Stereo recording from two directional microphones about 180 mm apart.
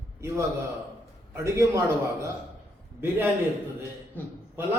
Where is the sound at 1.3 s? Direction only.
15° right (ahead or behind).